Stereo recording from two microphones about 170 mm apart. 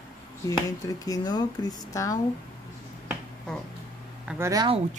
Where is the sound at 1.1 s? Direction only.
25° left (ahead or behind).